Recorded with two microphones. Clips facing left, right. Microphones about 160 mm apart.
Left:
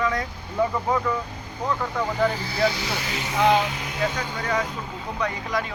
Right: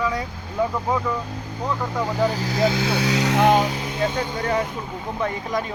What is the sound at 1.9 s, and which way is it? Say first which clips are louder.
Speech: right 2 dB; 10° right (ahead or behind).